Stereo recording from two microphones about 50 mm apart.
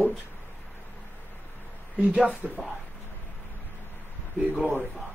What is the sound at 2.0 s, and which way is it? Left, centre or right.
Speech, right.